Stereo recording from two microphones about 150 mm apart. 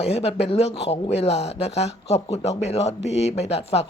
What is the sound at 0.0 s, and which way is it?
Speech, 45° left (ahead or behind).